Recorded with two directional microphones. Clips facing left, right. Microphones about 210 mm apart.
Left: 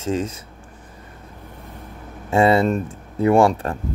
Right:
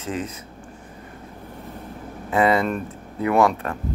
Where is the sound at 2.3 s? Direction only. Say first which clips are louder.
Left 3 dB; 30° left (ahead or behind).